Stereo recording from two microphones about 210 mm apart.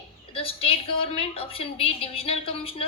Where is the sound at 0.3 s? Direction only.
25° left (ahead or behind).